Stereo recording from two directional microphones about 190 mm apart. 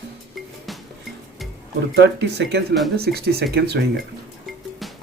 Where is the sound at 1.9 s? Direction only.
60° right (ahead or behind).